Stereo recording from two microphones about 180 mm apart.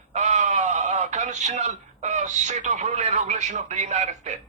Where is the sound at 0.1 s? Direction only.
40° right (ahead or behind).